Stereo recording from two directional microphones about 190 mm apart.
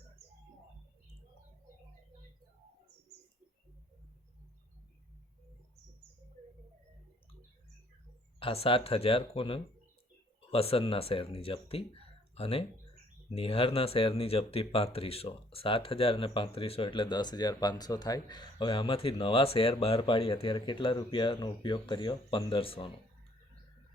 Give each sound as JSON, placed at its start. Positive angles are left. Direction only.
{"t": 8.4, "sound": "speech", "side_deg": 30}